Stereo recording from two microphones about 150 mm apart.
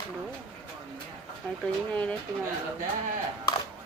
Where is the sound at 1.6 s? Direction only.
10° left (ahead or behind).